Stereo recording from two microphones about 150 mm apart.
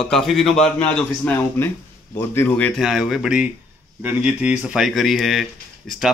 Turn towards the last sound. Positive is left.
turn(degrees=0)  # may be behind; listen again after turning